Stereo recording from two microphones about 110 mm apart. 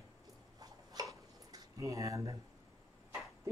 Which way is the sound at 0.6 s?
35° right (ahead or behind).